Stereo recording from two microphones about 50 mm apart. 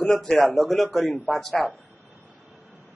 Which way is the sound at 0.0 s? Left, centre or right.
Centre.